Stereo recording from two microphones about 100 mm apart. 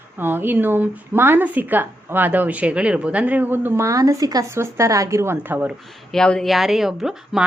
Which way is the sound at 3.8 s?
35° right (ahead or behind).